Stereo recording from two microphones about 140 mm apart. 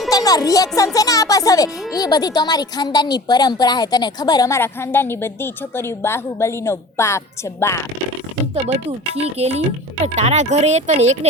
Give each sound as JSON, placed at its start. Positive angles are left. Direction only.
{"t": 0.1, "sound": "music", "side_deg": 25}
{"t": 0.9, "sound": "a child's voice", "side_deg": 25}
{"t": 8.5, "sound": "speech", "side_deg": -45}